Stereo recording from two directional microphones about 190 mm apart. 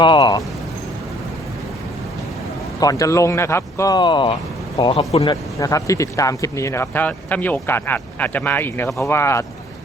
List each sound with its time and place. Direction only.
0.0 s speech: 25° left (ahead or behind)
2.8 s speech: 15° left (ahead or behind)
5.3 s speech: 20° left (ahead or behind)